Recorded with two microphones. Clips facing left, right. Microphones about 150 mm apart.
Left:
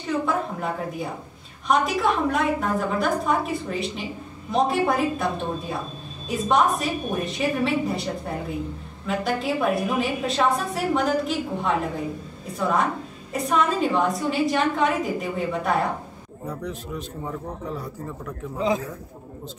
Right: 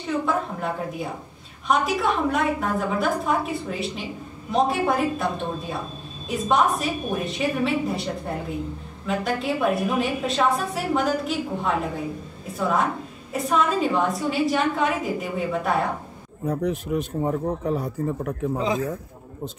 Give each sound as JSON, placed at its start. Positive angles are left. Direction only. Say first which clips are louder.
{"t": 0.2, "sound": "a woman's voice", "louder": "even", "side_deg": 0}
{"t": 16.4, "sound": "a man's voice", "louder": "right 7 dB", "side_deg": -60}
{"t": 17.6, "sound": "a man's voice", "louder": "right 7 dB", "side_deg": -50}